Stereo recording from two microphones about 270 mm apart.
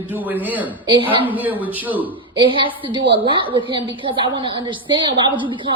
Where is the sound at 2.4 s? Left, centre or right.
Centre.